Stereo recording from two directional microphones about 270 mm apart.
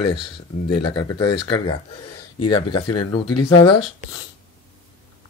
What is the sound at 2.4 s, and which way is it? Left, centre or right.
Speech, centre.